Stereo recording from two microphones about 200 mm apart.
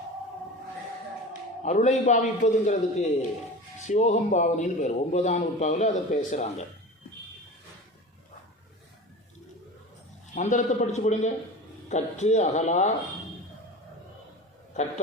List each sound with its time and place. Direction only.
1.3 s a man's voice: 35° left (ahead or behind)
10.3 s a man's voice: 40° left (ahead or behind)
14.7 s a man's voice: 35° left (ahead or behind)